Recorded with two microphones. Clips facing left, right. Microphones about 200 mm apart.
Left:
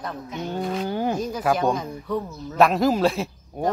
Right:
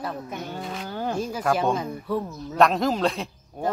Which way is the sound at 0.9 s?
15° left (ahead or behind).